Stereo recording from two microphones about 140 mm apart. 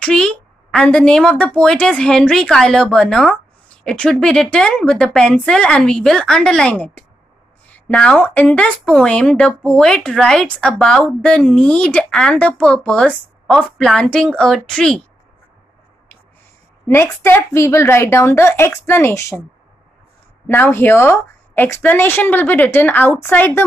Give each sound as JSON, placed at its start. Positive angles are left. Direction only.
{"t": 0.0, "sound": "a woman's voice", "side_deg": 5}
{"t": 16.8, "sound": "a woman's voice", "side_deg": 20}
{"t": 20.4, "sound": "a woman's voice", "side_deg": 15}